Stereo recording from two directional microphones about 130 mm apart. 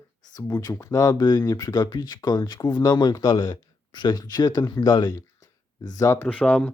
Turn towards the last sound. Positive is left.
turn(degrees=10)  # may be behind; listen again after turning